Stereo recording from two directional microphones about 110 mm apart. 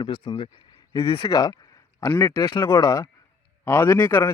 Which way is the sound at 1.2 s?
35° left (ahead or behind).